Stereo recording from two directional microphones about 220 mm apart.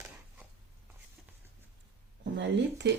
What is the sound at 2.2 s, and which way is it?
Speech, 55° right (ahead or behind).